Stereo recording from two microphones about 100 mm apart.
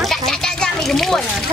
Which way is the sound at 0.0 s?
5° left (ahead or behind).